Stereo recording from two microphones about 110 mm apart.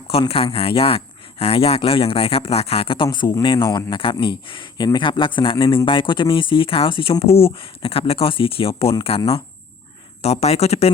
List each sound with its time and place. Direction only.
0.1 s speech: 60° left (ahead or behind)
10.2 s speech: 75° left (ahead or behind)